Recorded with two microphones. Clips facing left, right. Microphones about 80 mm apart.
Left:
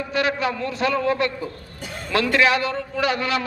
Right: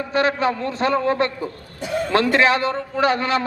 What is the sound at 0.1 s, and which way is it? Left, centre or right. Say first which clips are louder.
A man's voice: right 4 dB; right.